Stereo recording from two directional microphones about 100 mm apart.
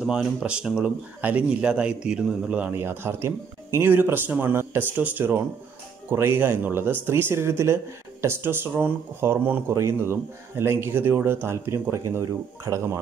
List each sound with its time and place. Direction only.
0.0 s speech: 5° right (ahead or behind); by 13.0 s 30° right (ahead or behind)